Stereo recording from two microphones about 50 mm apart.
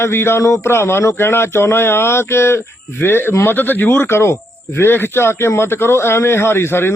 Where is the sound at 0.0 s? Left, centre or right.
Left.